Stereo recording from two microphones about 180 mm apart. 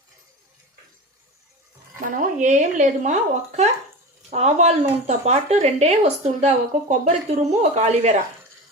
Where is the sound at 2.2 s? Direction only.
45° right (ahead or behind).